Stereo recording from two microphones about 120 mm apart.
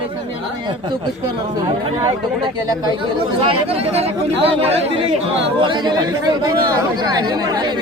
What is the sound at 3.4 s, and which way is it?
Speech, 55° right (ahead or behind).